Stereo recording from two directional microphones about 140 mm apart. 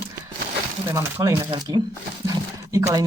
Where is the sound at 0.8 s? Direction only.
20° right (ahead or behind).